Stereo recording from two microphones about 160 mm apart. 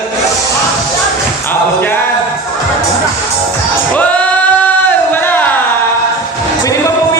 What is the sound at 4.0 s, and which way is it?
Singing, 10° left (ahead or behind).